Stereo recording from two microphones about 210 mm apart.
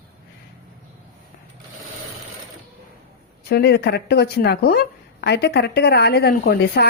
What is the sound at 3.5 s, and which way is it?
Speech, 50° left (ahead or behind).